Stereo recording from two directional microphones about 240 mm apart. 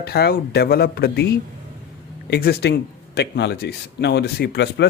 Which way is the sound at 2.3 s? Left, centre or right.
Left.